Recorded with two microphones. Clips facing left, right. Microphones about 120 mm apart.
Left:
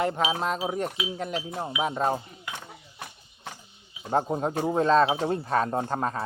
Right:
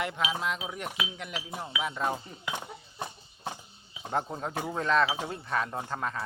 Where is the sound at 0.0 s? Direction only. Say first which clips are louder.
Left 6 dB; 40° left (ahead or behind).